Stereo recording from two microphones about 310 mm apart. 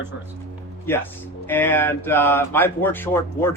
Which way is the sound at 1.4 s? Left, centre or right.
Centre.